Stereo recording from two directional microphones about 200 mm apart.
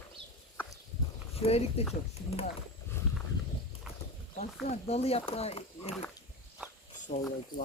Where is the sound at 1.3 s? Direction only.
30° left (ahead or behind).